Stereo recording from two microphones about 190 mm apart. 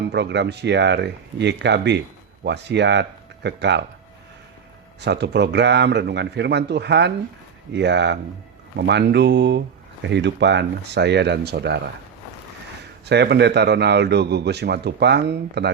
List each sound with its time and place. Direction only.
0.1 s speech: 65° right (ahead or behind)
4.9 s speech: 65° right (ahead or behind)
13.1 s speech: 60° right (ahead or behind)